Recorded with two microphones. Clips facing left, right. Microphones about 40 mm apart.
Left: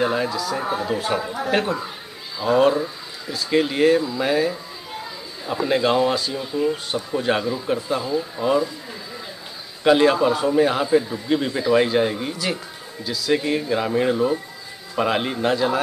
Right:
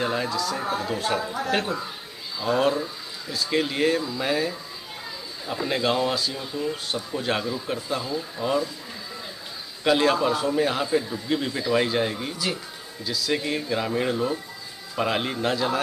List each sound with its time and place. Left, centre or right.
0.0 s speech: centre
9.8 s speech: centre